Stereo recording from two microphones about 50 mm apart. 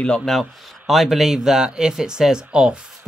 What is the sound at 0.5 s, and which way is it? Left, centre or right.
Speech, centre.